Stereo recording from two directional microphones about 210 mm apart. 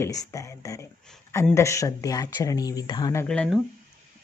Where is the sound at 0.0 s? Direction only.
15° left (ahead or behind).